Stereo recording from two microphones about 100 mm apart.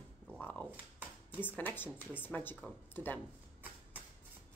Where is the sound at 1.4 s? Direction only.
15° left (ahead or behind).